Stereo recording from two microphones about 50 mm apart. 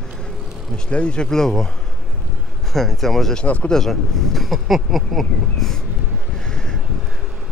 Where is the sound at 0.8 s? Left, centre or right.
Left.